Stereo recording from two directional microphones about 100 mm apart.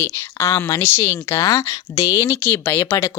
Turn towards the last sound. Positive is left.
turn(degrees=25)  # may be behind; listen again after turning